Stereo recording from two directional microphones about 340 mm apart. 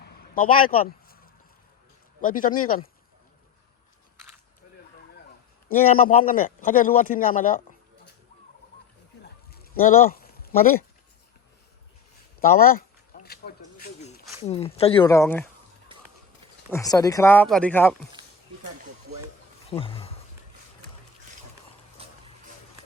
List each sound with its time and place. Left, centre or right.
0.3 s speech: left
2.2 s a man's voice: left
5.6 s a man's voice: left
9.7 s a sound: left
12.4 s a sound: left
14.4 s speech: centre
16.7 s speech: centre
19.7 s speech: centre
22.0 s a sound: centre